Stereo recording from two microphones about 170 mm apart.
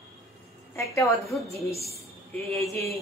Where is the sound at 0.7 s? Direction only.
15° left (ahead or behind).